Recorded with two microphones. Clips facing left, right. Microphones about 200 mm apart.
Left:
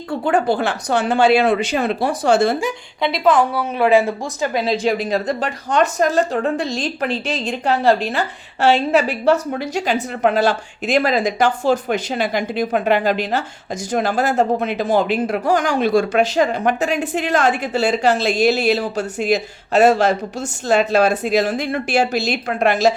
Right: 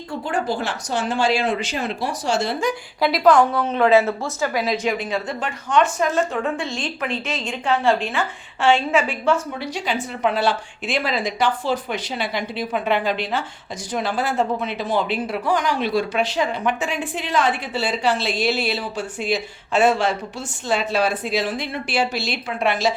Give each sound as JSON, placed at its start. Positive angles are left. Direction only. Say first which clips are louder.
{"t": 0.1, "sound": "speech", "louder": "left 6 dB", "side_deg": 60}
{"t": 2.6, "sound": "speech", "louder": "even", "side_deg": 0}